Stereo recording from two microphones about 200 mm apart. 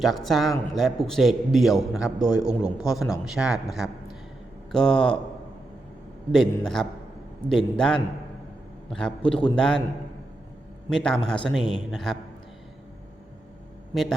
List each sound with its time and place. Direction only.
0.0 s speech: centre (ahead or behind)
6.3 s speech: centre (ahead or behind)
10.8 s speech: 5° left (ahead or behind)